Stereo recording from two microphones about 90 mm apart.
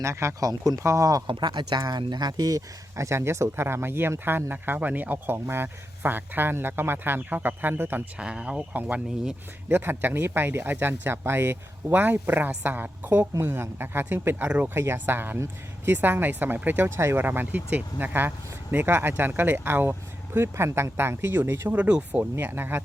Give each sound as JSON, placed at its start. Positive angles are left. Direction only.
{"t": 0.0, "sound": "speech", "side_deg": -30}
{"t": 1.3, "sound": "speech", "side_deg": -60}
{"t": 8.2, "sound": "speech", "side_deg": -10}
{"t": 14.7, "sound": "speech", "side_deg": -25}
{"t": 21.8, "sound": "speech", "side_deg": -15}